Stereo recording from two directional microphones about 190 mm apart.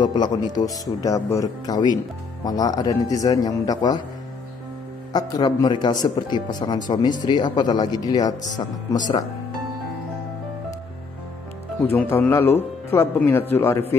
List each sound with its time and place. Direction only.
0.0 s speech: 20° left (ahead or behind)
5.1 s speech: 20° left (ahead or behind)
11.9 s speech: 10° left (ahead or behind)